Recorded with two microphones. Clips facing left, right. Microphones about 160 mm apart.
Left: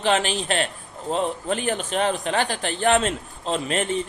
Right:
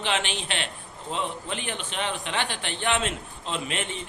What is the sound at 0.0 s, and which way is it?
A man's voice, 40° left (ahead or behind).